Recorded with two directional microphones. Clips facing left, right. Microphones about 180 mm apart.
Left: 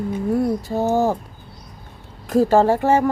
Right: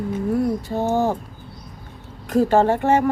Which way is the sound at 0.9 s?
40° left (ahead or behind).